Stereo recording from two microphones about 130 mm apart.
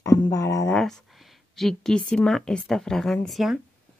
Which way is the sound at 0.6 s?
5° left (ahead or behind).